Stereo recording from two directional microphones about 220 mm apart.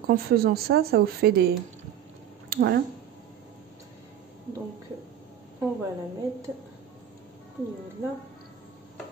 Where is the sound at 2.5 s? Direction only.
45° right (ahead or behind).